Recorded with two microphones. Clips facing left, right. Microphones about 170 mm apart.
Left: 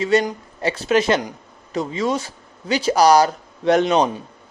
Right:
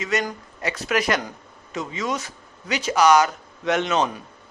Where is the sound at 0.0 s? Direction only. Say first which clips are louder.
Left 7 dB; 30° left (ahead or behind).